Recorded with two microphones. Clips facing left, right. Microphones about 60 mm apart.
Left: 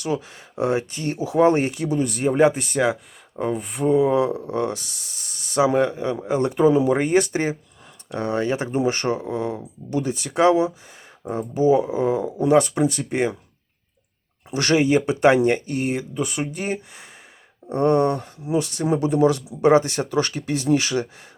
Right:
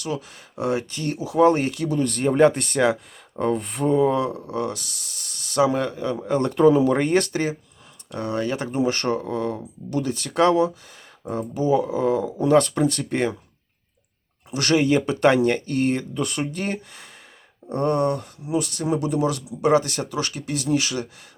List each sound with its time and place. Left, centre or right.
0.0 s speech: left; by 7.3 s centre
8.1 s speech: left
14.5 s speech: left; by 17.1 s centre
17.7 s speech: left